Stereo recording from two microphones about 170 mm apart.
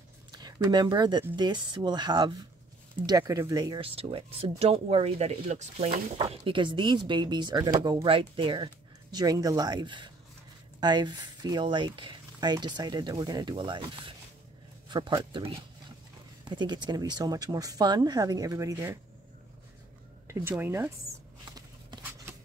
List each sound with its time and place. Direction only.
0.3 s speech: 25° right (ahead or behind)
3.8 s speech: 35° right (ahead or behind); by 18.9 s 15° right (ahead or behind)
20.2 s speech: 10° right (ahead or behind)
21.5 s a sound: 20° right (ahead or behind)